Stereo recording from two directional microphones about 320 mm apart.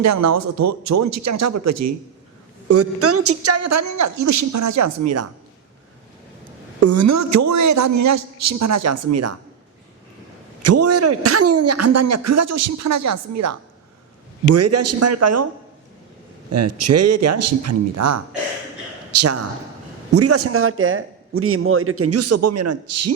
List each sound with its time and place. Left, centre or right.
0.0 s a man's voice: right
6.7 s a man's voice: right
10.6 s a man's voice: right
16.5 s a man's voice: right